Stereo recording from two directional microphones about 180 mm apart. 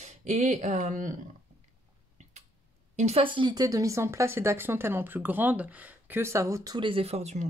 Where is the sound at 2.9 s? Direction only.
35° right (ahead or behind).